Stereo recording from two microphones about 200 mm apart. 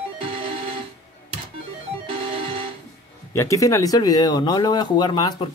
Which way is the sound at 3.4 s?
15° left (ahead or behind).